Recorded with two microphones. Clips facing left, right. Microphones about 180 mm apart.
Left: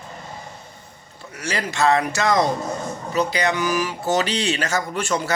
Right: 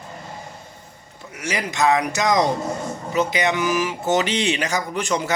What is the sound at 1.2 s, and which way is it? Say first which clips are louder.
Speech: even; 15° right (ahead or behind).